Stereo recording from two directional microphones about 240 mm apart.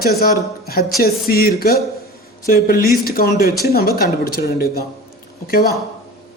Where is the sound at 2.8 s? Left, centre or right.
Left.